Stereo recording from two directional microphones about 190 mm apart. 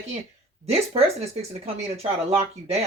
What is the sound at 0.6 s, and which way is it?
Speech, 35° right (ahead or behind).